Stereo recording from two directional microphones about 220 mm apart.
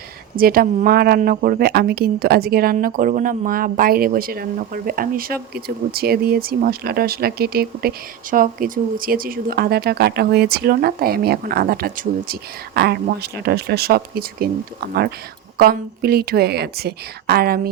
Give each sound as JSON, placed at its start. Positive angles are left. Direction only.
{"t": 0.3, "sound": "speech", "side_deg": -40}